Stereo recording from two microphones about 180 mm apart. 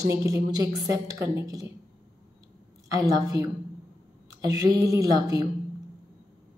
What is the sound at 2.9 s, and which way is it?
Speech, 20° right (ahead or behind).